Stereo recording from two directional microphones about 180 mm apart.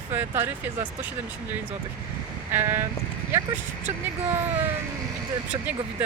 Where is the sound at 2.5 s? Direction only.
15° right (ahead or behind).